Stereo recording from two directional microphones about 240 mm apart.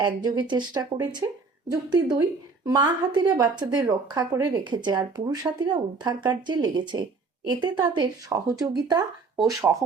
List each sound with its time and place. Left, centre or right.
0.0 s speech: centre